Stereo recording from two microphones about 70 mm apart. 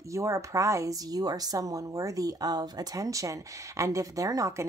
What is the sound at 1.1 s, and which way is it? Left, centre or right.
Speech, right.